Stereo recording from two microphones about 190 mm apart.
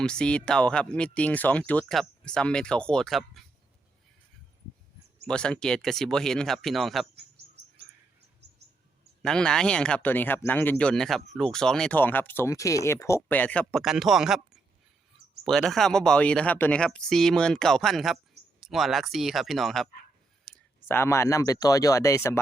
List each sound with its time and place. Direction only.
0.0 s speech: 5° left (ahead or behind)
5.2 s speech: 5° left (ahead or behind)
9.2 s speech: 5° left (ahead or behind)
20.4 s speech: 10° left (ahead or behind)